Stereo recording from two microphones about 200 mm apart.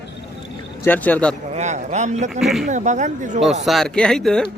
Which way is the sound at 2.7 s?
35° right (ahead or behind).